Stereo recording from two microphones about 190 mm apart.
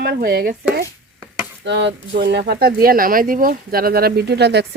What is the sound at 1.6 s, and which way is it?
Speech, 70° right (ahead or behind).